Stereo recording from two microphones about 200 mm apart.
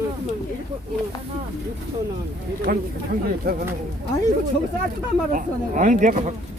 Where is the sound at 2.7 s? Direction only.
45° right (ahead or behind).